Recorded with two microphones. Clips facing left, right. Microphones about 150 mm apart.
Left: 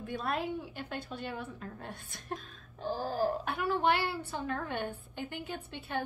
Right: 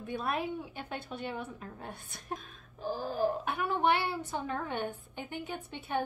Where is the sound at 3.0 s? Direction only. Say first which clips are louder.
Even; 40° left (ahead or behind).